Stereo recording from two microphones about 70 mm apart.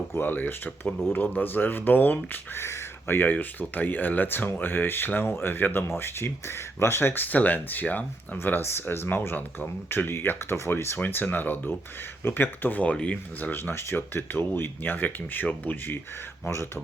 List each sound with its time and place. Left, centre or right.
0.1 s speech: left
2.6 s a sound: left
3.2 s speech: left
13.5 s speech: left
16.5 s speech: left